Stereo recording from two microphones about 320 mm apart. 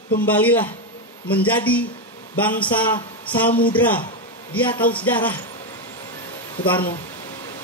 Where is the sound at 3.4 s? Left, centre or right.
Left.